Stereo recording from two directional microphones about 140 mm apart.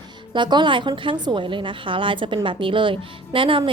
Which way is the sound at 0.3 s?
35° right (ahead or behind).